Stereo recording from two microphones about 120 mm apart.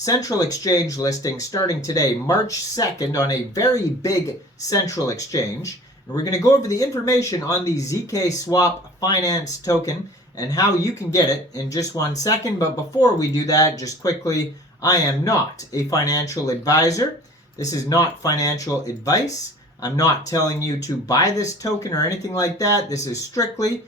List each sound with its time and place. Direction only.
0.0 s speech: 30° left (ahead or behind)